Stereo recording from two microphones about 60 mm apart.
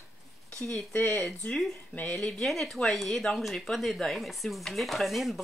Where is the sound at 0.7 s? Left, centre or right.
Left.